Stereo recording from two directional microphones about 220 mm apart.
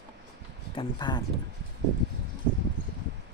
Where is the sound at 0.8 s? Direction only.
20° left (ahead or behind).